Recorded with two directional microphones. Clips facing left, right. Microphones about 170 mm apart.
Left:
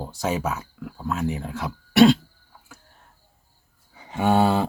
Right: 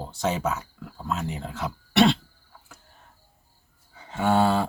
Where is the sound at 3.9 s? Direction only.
15° left (ahead or behind).